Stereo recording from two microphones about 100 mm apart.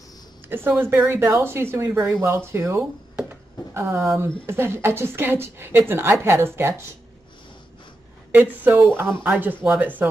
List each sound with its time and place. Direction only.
0.5 s a woman's voice: 20° right (ahead or behind)
8.3 s a woman's voice: 20° right (ahead or behind)